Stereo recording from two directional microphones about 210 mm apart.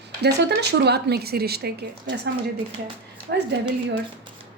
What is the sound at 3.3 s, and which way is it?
Speech, 55° right (ahead or behind).